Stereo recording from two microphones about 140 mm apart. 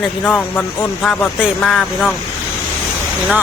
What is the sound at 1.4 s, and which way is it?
Speech, centre (ahead or behind).